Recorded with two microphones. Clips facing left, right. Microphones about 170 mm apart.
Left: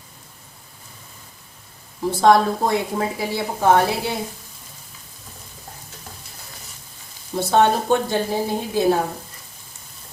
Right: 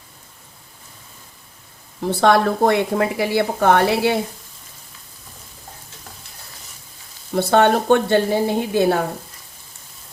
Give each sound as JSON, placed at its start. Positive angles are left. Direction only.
{"t": 2.0, "sound": "a woman's voice", "side_deg": -70}
{"t": 7.3, "sound": "a woman's voice", "side_deg": -65}